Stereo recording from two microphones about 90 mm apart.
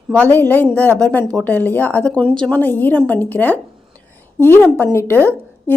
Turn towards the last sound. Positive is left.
turn(degrees=20)  # may be behind; listen again after turning